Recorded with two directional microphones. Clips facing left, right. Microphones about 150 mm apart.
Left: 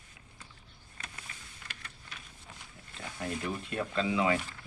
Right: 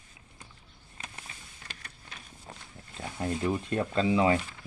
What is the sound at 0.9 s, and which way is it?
Vehicle, 25° right (ahead or behind).